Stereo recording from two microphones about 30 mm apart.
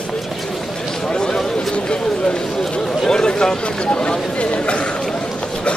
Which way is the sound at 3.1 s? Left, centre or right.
Left.